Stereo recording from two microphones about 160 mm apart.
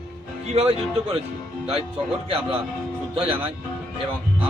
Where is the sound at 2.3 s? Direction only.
35° right (ahead or behind).